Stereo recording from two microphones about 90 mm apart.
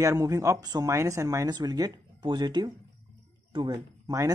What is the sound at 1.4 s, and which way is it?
Speech, 50° right (ahead or behind).